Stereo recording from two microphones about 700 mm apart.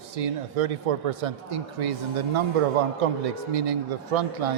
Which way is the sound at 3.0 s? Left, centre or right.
Right.